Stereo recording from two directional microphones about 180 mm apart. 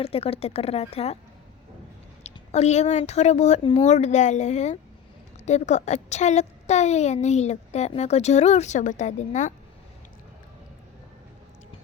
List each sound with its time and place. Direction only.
0.0 s a woman's voice: 35° left (ahead or behind)
2.2 s a woman's voice: 35° left (ahead or behind)